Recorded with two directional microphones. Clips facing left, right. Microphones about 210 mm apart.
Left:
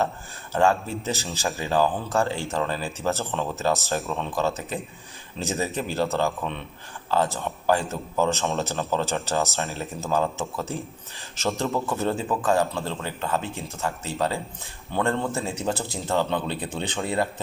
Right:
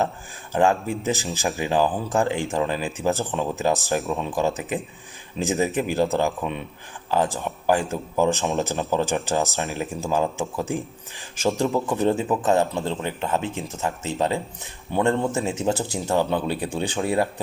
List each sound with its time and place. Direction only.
0.5 s a man's voice: 15° right (ahead or behind)